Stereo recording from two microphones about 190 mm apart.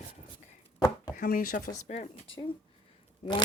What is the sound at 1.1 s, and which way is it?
Speech, 50° left (ahead or behind).